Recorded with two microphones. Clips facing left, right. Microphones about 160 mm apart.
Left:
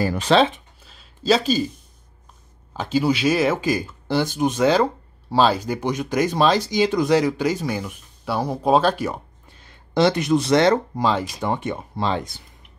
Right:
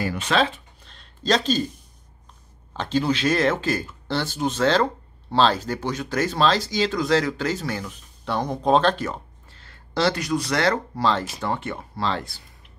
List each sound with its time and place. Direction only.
0.0 s speech: 35° left (ahead or behind)
0.8 s a sound: 5° left (ahead or behind)
2.7 s speech: 5° left (ahead or behind)